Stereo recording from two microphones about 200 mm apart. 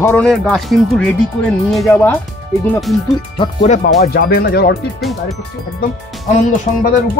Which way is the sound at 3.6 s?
35° left (ahead or behind).